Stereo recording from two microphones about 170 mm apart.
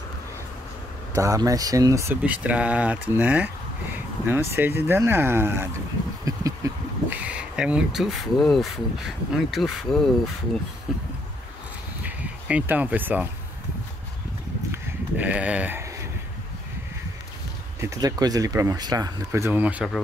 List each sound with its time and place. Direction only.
1.1 s speech: 20° right (ahead or behind); by 10.6 s centre (ahead or behind)
12.0 s speech: 10° right (ahead or behind)
14.7 s sheep: 10° right (ahead or behind)
17.7 s speech: 20° right (ahead or behind)